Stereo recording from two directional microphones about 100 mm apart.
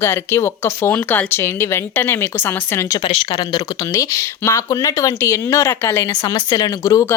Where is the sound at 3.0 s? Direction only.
70° left (ahead or behind).